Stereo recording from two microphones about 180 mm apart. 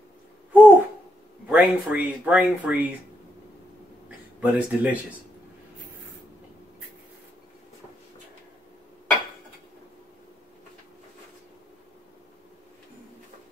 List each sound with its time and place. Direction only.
0.5 s babbling: 10° right (ahead or behind)
1.5 s speech: 10° right (ahead or behind)
4.4 s speech: 10° right (ahead or behind)